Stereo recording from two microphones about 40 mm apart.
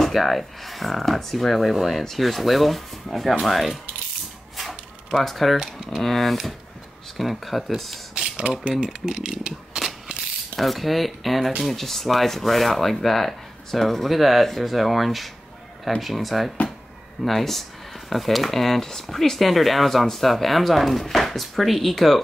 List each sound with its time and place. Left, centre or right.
0.0 s speech: centre
4.6 s a sound: centre
5.6 s speech: centre
6.0 s speech: centre
8.4 s speech: right
9.8 s ratchet: centre
10.5 s speech: centre